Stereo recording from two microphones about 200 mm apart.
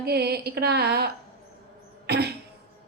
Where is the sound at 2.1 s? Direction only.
55° right (ahead or behind).